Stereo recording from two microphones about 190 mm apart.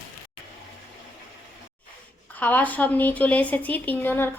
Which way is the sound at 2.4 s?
10° left (ahead or behind).